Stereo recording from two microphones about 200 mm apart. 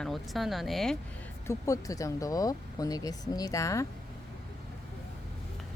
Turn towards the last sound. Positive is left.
turn(degrees=15)  # may be behind; listen again after turning